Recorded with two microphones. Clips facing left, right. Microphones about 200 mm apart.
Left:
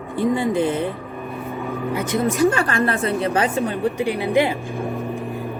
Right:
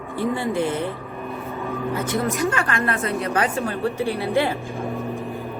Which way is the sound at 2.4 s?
35° left (ahead or behind).